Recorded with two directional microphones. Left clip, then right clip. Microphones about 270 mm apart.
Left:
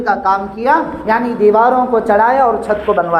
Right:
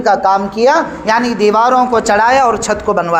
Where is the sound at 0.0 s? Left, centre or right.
Right.